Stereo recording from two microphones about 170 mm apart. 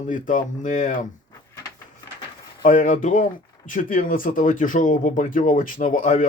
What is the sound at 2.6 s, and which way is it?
Speech, 50° left (ahead or behind).